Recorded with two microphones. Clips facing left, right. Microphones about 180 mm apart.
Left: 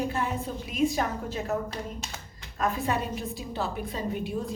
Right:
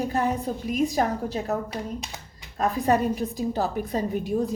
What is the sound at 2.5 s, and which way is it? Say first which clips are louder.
A woman's voice: right 6 dB; 40° right (ahead or behind).